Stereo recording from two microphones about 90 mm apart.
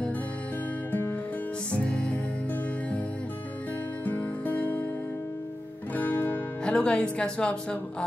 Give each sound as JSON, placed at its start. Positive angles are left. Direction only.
{"t": 1.7, "sound": "music", "side_deg": 10}
{"t": 4.0, "sound": "music", "side_deg": 20}
{"t": 5.9, "sound": "music", "side_deg": 20}